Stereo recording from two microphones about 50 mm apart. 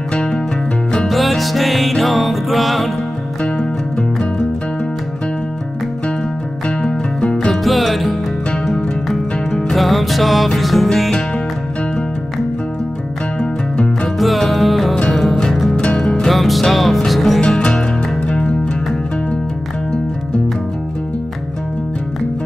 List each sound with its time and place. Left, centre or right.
0.9 s music: centre
6.8 s music: centre
7.6 s music: centre
9.5 s music: centre
14.1 s music: centre
16.3 s music: centre
17.4 s music: left